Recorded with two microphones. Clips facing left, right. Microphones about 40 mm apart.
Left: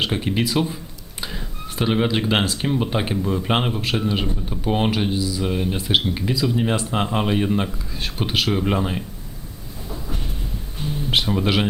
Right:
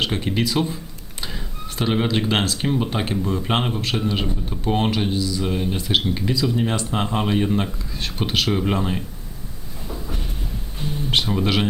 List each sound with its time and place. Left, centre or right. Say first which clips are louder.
0.0 s speech: even; centre
1.8 s speech: left 1 dB; centre
9.9 s a sound: even; centre
10.8 s speech: even; centre